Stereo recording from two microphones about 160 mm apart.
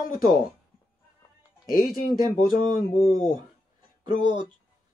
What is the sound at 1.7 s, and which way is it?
Speech, 65° left (ahead or behind).